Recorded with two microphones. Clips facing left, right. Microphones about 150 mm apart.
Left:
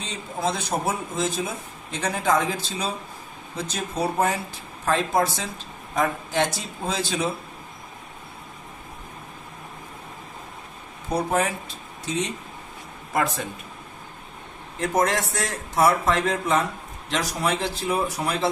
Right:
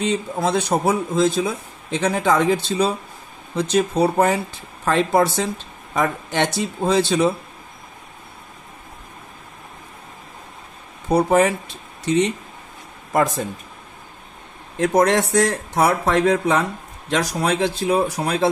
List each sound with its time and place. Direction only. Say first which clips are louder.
0.0 s speech: right 7 dB; 70° right (ahead or behind)
11.1 s speech: right 7 dB; 75° right (ahead or behind)
13.1 s speech: right 5 dB; 45° right (ahead or behind)
14.8 s speech: right 6 dB; 70° right (ahead or behind)